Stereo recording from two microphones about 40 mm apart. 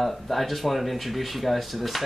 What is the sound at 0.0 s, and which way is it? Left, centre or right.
Speech, centre.